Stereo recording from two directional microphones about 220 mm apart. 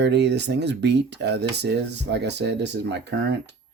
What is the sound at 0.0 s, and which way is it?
Speech, 50° right (ahead or behind).